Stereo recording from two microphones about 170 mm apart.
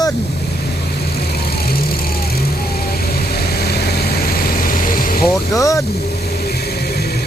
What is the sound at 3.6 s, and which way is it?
Vehicle, 70° left (ahead or behind).